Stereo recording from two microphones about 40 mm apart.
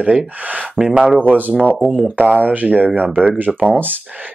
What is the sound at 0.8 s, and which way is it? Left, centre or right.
Speech, left.